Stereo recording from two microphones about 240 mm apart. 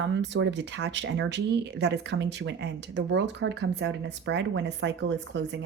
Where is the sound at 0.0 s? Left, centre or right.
Right.